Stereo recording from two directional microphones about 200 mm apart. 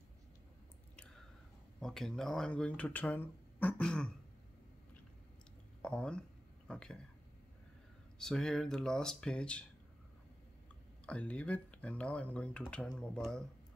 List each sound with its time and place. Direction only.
1.8 s speech: centre (ahead or behind)
5.8 s speech: 5° left (ahead or behind)
8.2 s speech: 5° left (ahead or behind)
11.1 s speech: 5° left (ahead or behind)